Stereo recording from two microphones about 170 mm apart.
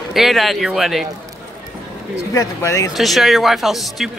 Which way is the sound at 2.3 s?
15° left (ahead or behind).